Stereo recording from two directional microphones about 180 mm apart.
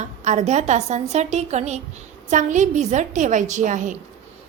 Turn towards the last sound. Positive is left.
turn(degrees=-45)  # may be behind; listen again after turning